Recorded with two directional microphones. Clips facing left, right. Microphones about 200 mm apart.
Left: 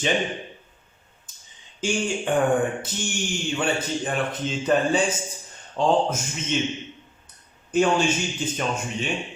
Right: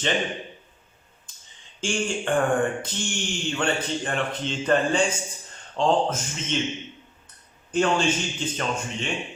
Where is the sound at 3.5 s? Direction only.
5° left (ahead or behind).